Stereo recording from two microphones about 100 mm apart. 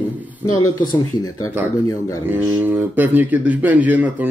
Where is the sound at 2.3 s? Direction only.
20° right (ahead or behind).